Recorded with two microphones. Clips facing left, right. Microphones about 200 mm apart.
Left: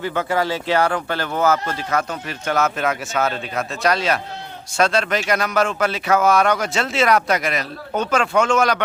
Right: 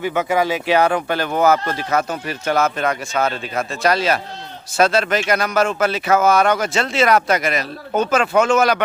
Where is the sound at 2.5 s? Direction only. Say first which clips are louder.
Right 2 dB; centre (ahead or behind).